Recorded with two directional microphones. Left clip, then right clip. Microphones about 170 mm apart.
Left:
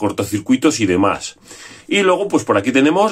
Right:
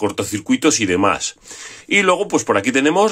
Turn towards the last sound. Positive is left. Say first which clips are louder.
# left 1 dB
turn(degrees=-25)  # may be behind; listen again after turning